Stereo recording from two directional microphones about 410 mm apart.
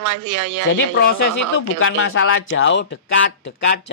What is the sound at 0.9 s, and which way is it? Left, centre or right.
Speech, left.